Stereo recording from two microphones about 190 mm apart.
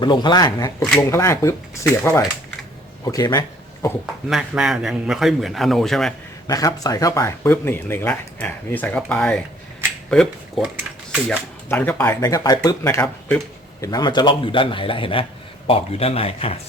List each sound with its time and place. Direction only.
0.0 s a man's voice: 25° left (ahead or behind)
4.3 s a man's voice: 5° right (ahead or behind)
6.5 s a man's voice: 20° left (ahead or behind)
12.2 s a man's voice: 20° left (ahead or behind)